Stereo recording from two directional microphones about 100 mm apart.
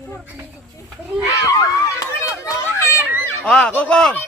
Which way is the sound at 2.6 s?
25° left (ahead or behind).